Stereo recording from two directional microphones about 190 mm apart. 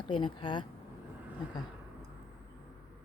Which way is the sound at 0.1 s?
25° left (ahead or behind).